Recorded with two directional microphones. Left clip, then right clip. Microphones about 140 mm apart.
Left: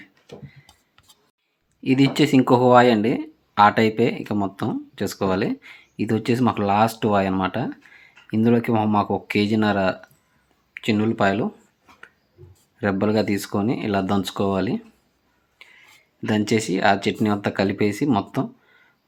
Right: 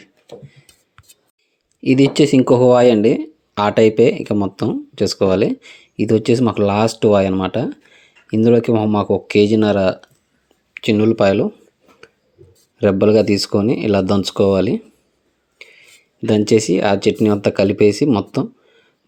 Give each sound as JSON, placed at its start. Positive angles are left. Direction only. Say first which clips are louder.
{"t": 1.8, "sound": "speech", "louder": "right 6 dB", "side_deg": -35}
{"t": 10.8, "sound": "speech", "louder": "right 7 dB", "side_deg": -45}
{"t": 12.8, "sound": "speech", "louder": "right 9 dB", "side_deg": -40}
{"t": 16.3, "sound": "speech", "louder": "right 8 dB", "side_deg": -40}